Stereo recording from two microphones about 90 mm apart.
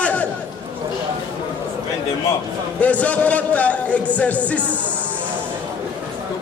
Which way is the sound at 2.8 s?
15° left (ahead or behind).